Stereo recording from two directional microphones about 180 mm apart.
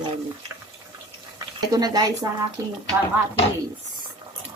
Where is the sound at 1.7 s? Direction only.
20° right (ahead or behind).